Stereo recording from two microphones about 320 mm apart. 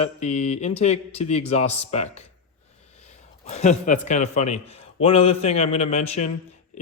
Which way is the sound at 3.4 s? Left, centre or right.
Left.